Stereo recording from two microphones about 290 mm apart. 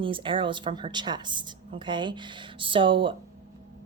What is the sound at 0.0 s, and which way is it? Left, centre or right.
Speech, centre.